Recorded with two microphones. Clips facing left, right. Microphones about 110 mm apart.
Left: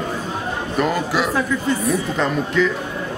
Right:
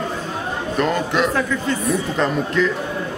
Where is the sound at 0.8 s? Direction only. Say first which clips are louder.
Right 1 dB; 5° left (ahead or behind).